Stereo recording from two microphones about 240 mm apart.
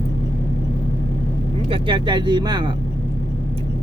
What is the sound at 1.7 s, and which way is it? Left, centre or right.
Speech, centre.